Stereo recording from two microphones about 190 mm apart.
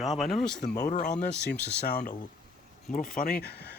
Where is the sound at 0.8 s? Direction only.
40° left (ahead or behind).